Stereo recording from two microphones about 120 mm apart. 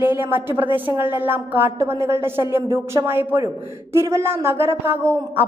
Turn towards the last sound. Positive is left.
turn(degrees=-20)  # may be behind; listen again after turning